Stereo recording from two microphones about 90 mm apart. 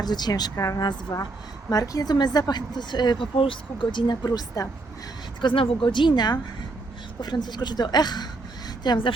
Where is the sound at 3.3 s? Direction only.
80° left; by 5.3 s 40° left (ahead or behind).